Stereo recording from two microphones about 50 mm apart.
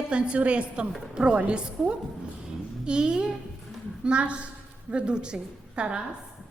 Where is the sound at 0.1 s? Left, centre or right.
Right.